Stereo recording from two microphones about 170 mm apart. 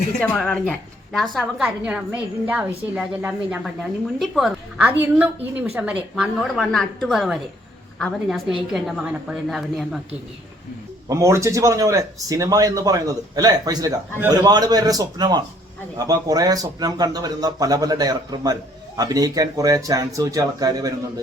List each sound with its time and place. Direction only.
0.2 s a woman's voice: 5° left (ahead or behind)
11.1 s speech: 15° right (ahead or behind)